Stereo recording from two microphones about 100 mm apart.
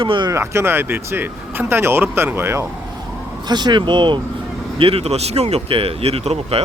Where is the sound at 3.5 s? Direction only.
45° right (ahead or behind).